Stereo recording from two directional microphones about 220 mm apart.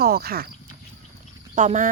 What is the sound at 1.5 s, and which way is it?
Speech, 35° right (ahead or behind).